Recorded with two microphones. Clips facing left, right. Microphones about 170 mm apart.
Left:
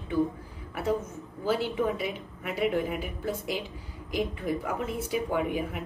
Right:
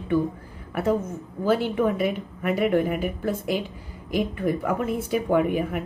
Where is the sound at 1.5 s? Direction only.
55° right (ahead or behind).